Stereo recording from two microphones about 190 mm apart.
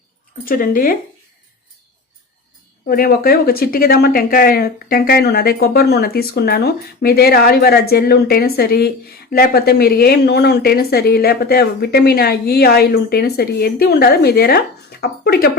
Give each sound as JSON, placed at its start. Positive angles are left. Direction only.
{"t": 0.4, "sound": "speech", "side_deg": 50}
{"t": 2.8, "sound": "speech", "side_deg": 50}